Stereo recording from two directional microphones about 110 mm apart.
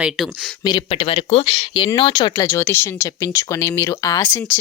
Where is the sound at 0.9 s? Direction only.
60° left (ahead or behind).